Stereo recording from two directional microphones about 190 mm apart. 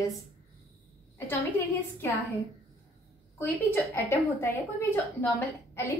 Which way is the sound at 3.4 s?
10° left (ahead or behind).